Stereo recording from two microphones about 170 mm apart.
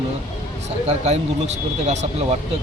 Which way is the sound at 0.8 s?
40° right (ahead or behind).